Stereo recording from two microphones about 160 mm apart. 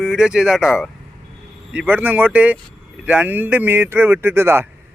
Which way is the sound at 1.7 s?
10° right (ahead or behind).